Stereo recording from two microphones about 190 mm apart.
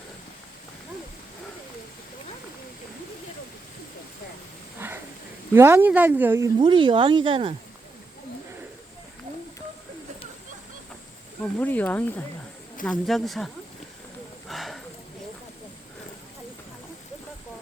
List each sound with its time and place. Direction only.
5.5 s speech: 10° right (ahead or behind)
6.6 s speech: 25° right (ahead or behind)
11.6 s speech: 10° left (ahead or behind)
14.4 s a sound: centre (ahead or behind)